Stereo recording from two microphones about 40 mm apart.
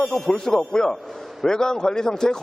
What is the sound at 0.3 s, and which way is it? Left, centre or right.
A man's voice, centre.